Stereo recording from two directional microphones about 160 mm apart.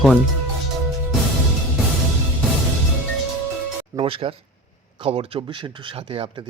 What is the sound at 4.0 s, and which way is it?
Speech, 35° right (ahead or behind).